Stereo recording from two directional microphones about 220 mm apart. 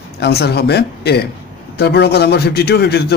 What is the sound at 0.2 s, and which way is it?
A man's voice, 45° left (ahead or behind).